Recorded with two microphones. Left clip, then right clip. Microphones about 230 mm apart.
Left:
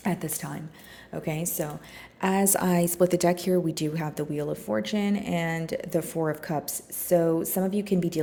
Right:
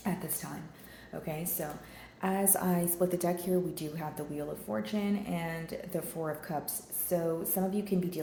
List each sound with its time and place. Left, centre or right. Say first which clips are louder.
1.1 s a woman's voice: left 7 dB; left